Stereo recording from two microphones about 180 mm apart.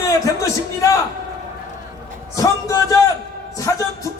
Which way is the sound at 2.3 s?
20° left (ahead or behind).